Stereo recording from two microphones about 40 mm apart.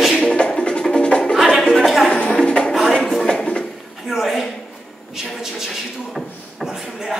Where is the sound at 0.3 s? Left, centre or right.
Left.